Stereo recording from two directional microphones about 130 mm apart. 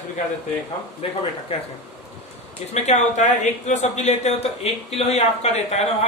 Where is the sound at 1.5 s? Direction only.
45° left (ahead or behind).